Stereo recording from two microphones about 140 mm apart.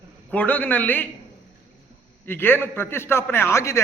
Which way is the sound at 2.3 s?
15° left (ahead or behind).